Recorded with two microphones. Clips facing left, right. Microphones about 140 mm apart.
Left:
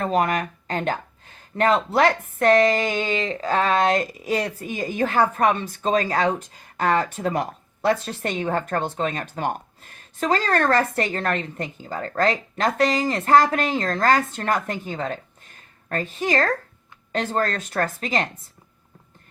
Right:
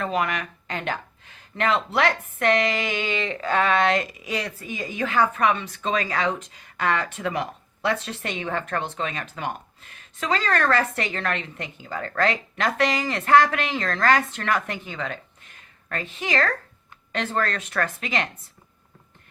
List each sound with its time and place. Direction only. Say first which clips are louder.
0.0 s speech: left 4 dB; 40° left (ahead or behind)